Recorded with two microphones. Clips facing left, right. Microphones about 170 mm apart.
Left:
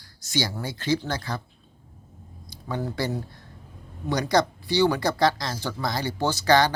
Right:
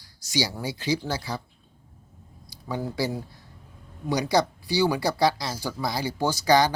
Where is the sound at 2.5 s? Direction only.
10° right (ahead or behind).